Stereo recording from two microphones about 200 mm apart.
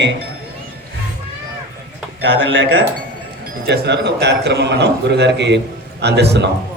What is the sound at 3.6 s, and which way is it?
A man's voice, 55° right (ahead or behind).